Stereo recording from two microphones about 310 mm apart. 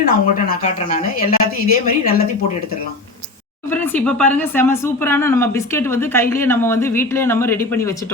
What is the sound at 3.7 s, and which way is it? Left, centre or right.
Speech, centre.